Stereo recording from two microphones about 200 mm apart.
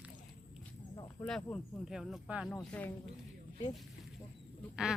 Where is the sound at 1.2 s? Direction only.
5° left (ahead or behind).